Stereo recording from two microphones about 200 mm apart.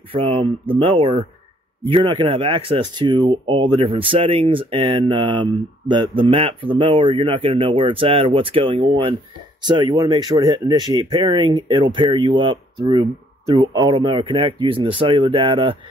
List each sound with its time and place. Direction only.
0.1 s speech: 25° right (ahead or behind)